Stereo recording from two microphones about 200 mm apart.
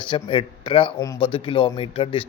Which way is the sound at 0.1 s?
25° left (ahead or behind).